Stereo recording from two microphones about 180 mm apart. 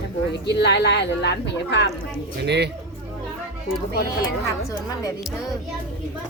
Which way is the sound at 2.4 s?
70° right (ahead or behind).